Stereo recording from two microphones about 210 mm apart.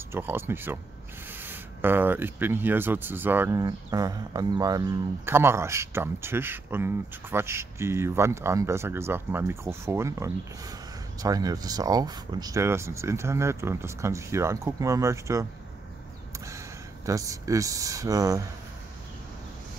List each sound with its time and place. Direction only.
0.1 s speech: 10° right (ahead or behind)
16.4 s speech: 15° right (ahead or behind)